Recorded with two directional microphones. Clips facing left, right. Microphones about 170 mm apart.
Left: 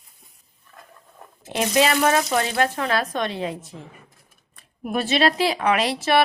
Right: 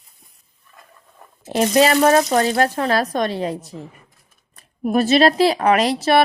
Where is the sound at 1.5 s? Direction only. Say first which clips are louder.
Right 5 dB; 40° right (ahead or behind).